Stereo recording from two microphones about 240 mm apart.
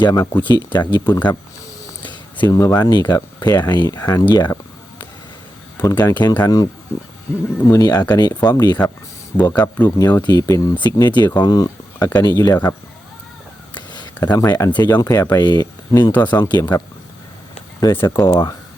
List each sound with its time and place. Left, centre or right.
0.0 s speech: centre
5.7 s speech: centre
13.7 s speech: centre
16.1 s speech: centre
16.4 s speech: centre